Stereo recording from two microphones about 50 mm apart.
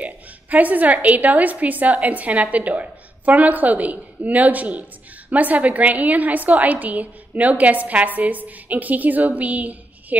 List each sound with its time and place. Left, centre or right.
0.0 s a woman's voice: right